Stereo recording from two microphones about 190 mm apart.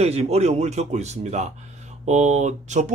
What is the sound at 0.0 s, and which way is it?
Speech, 35° right (ahead or behind).